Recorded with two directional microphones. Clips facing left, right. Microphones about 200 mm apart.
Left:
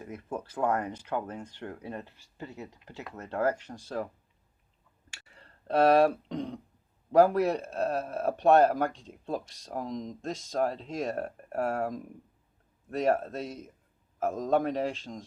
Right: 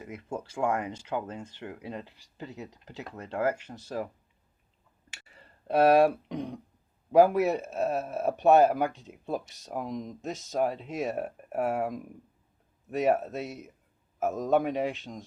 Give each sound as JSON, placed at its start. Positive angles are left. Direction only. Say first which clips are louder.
{"t": 0.4, "sound": "speech", "louder": "even", "side_deg": -10}
{"t": 1.0, "sound": "speech", "louder": "even", "side_deg": -20}
{"t": 1.4, "sound": "speech", "louder": "even", "side_deg": -10}
{"t": 5.1, "sound": "speech", "louder": "right 1 dB", "side_deg": -5}